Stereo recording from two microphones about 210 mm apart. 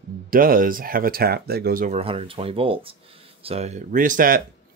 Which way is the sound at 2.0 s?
30° right (ahead or behind).